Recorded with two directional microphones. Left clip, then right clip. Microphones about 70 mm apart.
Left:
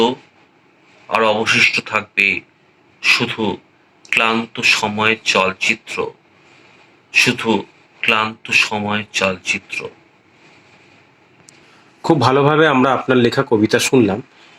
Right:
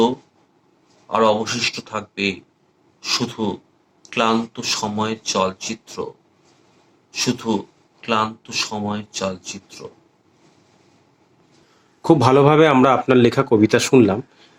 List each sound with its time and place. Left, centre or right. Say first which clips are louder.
0.0 s a sound: left 2 dB; right
1.0 s speech: left 2 dB; right
12.2 s speech: left 1 dB; right